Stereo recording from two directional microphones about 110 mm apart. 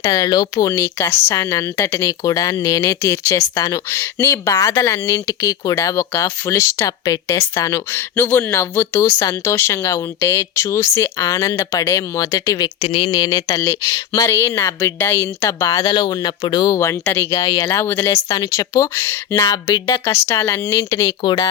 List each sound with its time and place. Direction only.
0.0 s speech: 35° left (ahead or behind)
0.7 s a woman's voice: 20° left (ahead or behind)
12.8 s speech: 55° left (ahead or behind)
13.1 s a woman's voice: 40° left (ahead or behind)
15.9 s speech: 40° left (ahead or behind); by 17.4 s 20° left (ahead or behind)
17.4 s speech: 35° left (ahead or behind)
17.7 s a woman's voice: 25° left (ahead or behind)
19.5 s speech: 40° left (ahead or behind)
19.9 s a woman's voice: 25° left (ahead or behind)